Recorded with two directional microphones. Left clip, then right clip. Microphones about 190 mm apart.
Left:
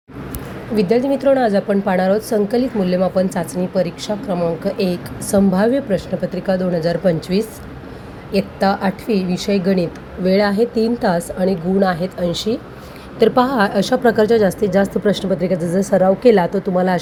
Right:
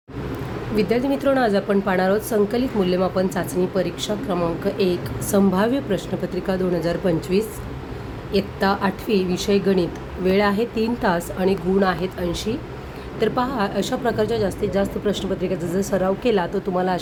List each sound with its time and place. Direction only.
0.8 s a woman's voice: 10° left (ahead or behind)